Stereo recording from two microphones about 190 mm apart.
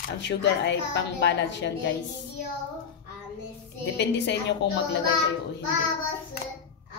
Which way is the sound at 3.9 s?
65° left (ahead or behind).